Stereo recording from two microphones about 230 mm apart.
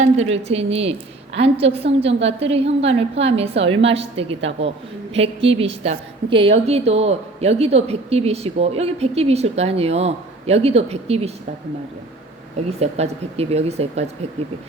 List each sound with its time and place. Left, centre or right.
0.0 s a woman's voice: right
12.8 s a woman's voice: right